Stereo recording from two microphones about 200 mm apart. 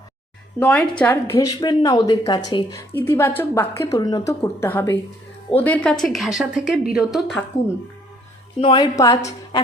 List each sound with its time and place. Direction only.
0.6 s a woman's voice: 5° left (ahead or behind)
1.1 s a woman's voice: 20° left (ahead or behind); by 7.4 s centre (ahead or behind)
8.6 s a woman's voice: 20° left (ahead or behind)